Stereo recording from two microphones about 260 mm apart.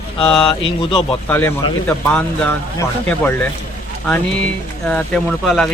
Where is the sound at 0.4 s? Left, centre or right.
Centre.